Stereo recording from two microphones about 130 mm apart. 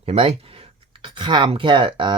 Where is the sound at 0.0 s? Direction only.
50° right (ahead or behind).